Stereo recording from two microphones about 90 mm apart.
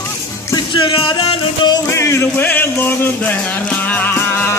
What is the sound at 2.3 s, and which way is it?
Music, 20° left (ahead or behind).